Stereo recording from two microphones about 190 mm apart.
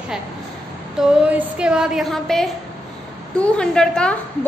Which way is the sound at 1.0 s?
Centre (ahead or behind).